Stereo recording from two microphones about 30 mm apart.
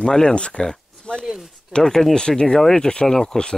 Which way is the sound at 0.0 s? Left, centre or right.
Left.